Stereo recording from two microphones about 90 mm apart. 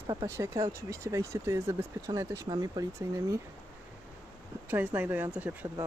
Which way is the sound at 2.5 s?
45° right (ahead or behind).